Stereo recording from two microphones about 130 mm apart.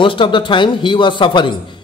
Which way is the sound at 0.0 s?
40° left (ahead or behind).